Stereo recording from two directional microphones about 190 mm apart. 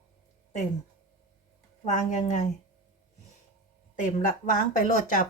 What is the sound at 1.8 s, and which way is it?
Speech, 40° left (ahead or behind).